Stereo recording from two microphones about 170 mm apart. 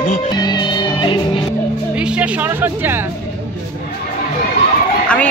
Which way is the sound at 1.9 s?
5° right (ahead or behind).